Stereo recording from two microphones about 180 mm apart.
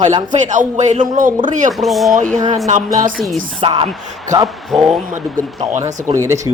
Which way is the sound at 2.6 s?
45° right (ahead or behind).